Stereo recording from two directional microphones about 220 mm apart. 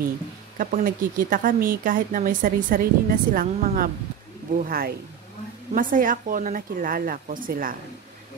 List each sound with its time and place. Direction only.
0.6 s speech: 40° right (ahead or behind)